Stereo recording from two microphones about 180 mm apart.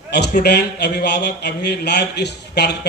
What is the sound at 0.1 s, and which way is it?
A man's voice, 65° left (ahead or behind).